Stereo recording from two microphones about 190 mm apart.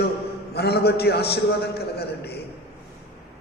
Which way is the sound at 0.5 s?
55° left (ahead or behind).